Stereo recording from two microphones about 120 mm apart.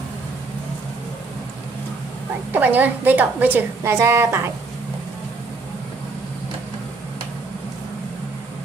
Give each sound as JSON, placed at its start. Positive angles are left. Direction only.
{"t": 2.5, "sound": "a woman's voice", "side_deg": -15}